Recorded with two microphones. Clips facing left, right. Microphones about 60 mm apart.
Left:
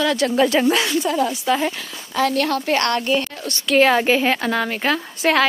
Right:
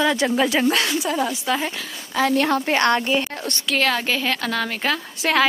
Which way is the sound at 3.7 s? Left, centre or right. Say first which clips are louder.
Left 7 dB; centre.